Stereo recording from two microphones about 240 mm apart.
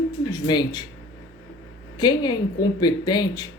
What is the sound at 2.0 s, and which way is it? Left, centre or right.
Speech, centre.